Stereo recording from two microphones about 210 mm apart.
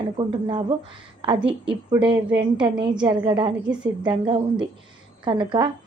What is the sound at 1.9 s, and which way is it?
Speech, 20° right (ahead or behind).